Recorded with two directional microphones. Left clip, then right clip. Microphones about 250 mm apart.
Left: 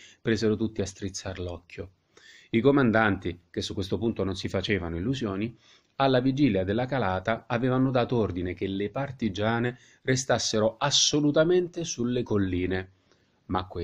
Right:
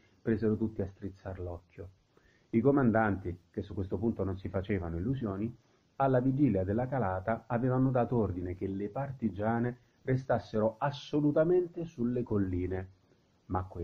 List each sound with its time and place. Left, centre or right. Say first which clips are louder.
0.2 s speech: left 5 dB; left